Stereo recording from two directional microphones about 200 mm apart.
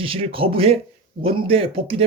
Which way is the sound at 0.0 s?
25° right (ahead or behind).